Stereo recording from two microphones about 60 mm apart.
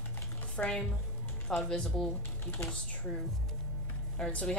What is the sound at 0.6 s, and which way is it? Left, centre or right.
A woman's voice, centre.